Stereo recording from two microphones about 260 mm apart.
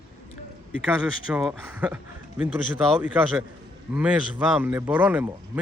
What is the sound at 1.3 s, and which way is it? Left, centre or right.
A man's voice, centre.